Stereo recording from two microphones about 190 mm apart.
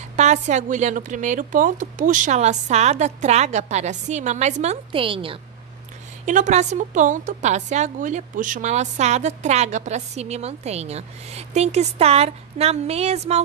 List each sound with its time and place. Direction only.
0.1 s a woman's voice: 40° right (ahead or behind)
6.2 s a woman's voice: 40° right (ahead or behind)